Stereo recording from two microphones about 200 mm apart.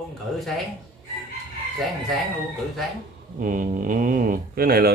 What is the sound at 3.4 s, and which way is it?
A man's voice, 45° right (ahead or behind).